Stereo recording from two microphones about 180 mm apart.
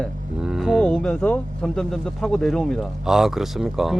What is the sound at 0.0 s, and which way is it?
Speech, centre (ahead or behind).